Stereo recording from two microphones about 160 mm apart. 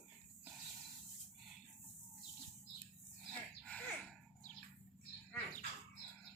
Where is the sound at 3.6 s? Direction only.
5° left (ahead or behind).